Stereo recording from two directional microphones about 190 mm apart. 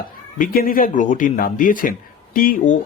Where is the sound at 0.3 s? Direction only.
50° left (ahead or behind).